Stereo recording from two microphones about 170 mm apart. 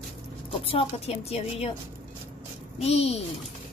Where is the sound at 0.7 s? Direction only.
35° left (ahead or behind).